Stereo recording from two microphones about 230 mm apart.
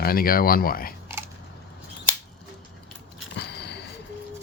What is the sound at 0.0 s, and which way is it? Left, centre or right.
Speech, left.